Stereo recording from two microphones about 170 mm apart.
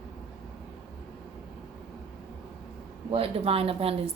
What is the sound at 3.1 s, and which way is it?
A woman's voice, 35° right (ahead or behind).